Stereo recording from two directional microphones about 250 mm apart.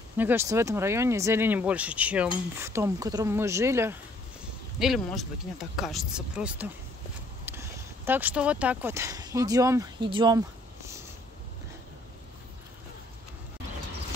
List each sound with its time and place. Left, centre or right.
0.2 s speech: centre